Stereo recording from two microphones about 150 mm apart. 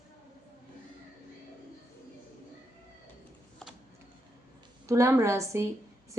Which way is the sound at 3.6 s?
5° left (ahead or behind).